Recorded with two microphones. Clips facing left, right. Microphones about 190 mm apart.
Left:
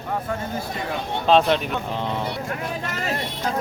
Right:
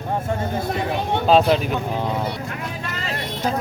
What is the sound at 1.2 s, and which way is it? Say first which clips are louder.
Speech: right 1 dB; 5° right (ahead or behind).